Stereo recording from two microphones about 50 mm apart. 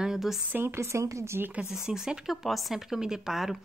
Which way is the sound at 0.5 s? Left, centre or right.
Right.